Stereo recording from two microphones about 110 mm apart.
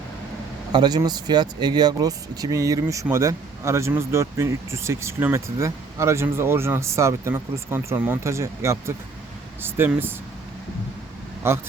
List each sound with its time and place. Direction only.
0.7 s speech: 40° right (ahead or behind); by 10.2 s 20° right (ahead or behind)
11.4 s speech: 25° right (ahead or behind)